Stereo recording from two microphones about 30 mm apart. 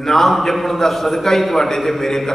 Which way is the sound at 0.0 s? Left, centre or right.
Centre.